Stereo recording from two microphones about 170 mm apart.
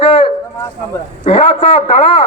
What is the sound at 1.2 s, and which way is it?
Speech, 35° left (ahead or behind).